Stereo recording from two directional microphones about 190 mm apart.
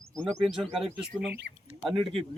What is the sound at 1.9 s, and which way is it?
Speech, 30° right (ahead or behind).